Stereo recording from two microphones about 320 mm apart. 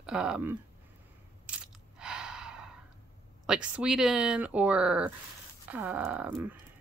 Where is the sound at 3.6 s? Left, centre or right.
Centre.